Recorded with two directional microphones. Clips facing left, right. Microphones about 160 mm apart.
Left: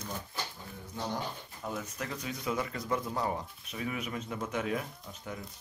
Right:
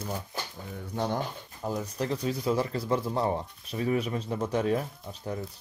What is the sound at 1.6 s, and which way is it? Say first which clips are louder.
Speech: right 7 dB; 35° right (ahead or behind).